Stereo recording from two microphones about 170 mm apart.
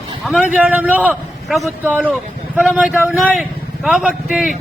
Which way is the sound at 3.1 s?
5° right (ahead or behind).